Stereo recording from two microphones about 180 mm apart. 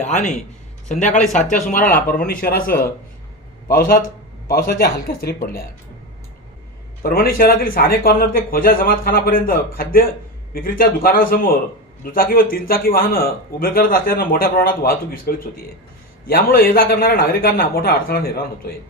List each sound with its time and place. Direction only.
0.0 s a man's voice: 40° left (ahead or behind); by 5.6 s 55° left (ahead or behind)
7.0 s speech: 55° left (ahead or behind)